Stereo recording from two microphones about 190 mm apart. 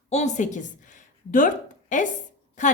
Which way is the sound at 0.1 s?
35° left (ahead or behind).